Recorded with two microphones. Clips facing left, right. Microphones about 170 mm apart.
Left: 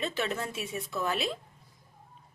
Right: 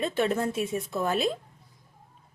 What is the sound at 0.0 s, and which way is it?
Speech, 50° right (ahead or behind).